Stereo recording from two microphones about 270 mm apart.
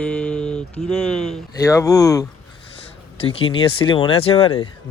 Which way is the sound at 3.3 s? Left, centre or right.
Centre.